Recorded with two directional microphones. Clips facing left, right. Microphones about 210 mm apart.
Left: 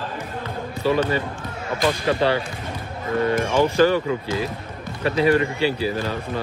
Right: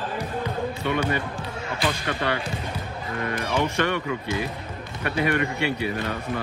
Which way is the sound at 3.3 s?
35° left (ahead or behind).